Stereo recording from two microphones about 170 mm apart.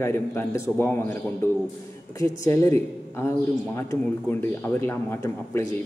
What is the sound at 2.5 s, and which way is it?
Speech, 15° left (ahead or behind).